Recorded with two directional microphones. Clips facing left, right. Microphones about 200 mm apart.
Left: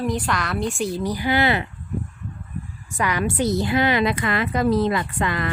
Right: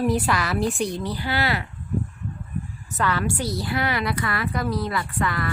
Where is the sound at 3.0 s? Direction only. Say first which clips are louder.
Left 2 dB; 15° left (ahead or behind).